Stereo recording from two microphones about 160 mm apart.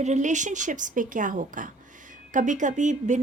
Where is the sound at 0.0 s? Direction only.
50° right (ahead or behind).